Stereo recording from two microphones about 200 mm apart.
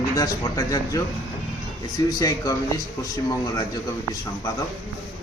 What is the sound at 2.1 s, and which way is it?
A man's voice, 15° left (ahead or behind).